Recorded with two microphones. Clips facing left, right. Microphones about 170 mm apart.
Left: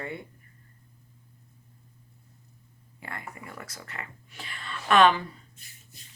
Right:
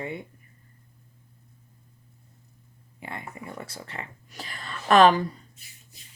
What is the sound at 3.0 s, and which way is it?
Speech, 20° right (ahead or behind).